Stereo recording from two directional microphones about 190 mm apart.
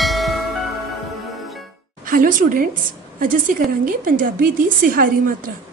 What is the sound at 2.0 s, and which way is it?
A woman's voice, 45° right (ahead or behind).